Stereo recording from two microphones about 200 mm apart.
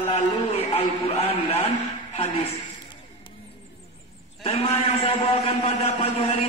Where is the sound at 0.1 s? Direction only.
30° left (ahead or behind).